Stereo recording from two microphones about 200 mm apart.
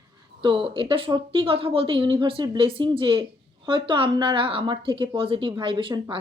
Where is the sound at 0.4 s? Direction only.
25° right (ahead or behind).